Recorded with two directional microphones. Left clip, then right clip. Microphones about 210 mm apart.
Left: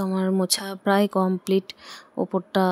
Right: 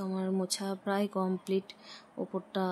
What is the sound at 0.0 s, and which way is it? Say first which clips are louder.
Speech: left 10 dB; 40° left (ahead or behind).